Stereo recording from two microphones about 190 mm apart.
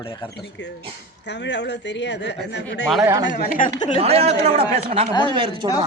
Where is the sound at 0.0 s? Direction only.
25° left (ahead or behind).